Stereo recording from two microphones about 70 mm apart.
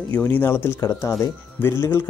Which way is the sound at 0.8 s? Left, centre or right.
Left.